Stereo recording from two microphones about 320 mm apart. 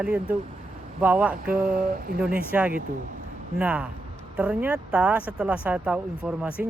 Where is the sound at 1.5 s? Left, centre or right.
Right.